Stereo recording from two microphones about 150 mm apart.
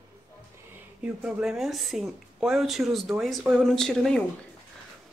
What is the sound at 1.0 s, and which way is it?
Speech, 5° right (ahead or behind).